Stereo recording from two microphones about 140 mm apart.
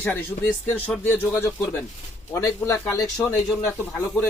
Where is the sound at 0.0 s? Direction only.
15° left (ahead or behind).